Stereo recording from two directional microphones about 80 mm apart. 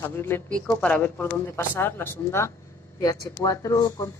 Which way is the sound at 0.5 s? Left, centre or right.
Centre.